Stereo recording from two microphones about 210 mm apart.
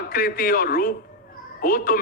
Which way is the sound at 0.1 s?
45° left (ahead or behind).